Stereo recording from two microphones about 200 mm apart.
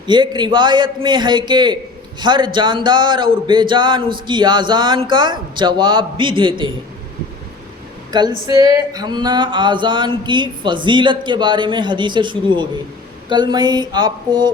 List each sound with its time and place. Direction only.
0.1 s a man's voice: 25° right (ahead or behind)
8.4 s a man's voice: 20° right (ahead or behind)